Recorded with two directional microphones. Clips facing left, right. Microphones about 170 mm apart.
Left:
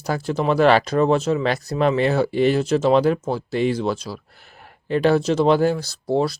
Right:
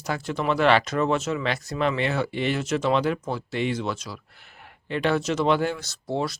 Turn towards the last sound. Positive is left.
turn(degrees=35)  # may be behind; listen again after turning